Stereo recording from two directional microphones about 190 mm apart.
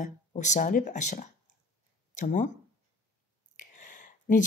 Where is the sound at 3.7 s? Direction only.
45° left (ahead or behind).